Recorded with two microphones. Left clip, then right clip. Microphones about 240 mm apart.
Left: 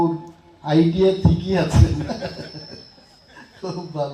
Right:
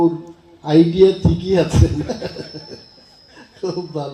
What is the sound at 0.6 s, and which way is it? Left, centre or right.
Speech, right.